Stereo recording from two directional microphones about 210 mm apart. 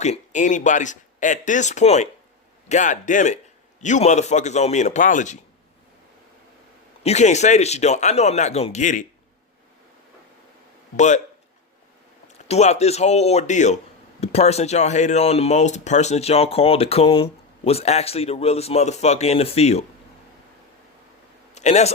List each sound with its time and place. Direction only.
0.0 s speech: 35° left (ahead or behind)
7.0 s speech: 30° left (ahead or behind)
10.9 s speech: 35° left (ahead or behind)
12.5 s speech: 30° left (ahead or behind)
21.5 s speech: 30° left (ahead or behind)